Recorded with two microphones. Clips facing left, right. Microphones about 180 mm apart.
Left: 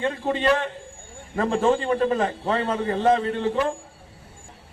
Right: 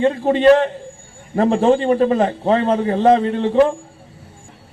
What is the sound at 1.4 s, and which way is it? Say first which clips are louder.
A man's voice: right 6 dB; 35° right (ahead or behind).